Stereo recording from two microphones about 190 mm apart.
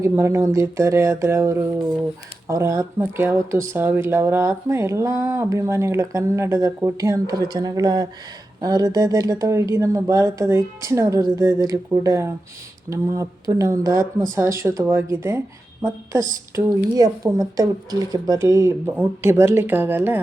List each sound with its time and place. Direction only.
0.0 s speech: 15° right (ahead or behind)
16.6 s speech: 15° right (ahead or behind)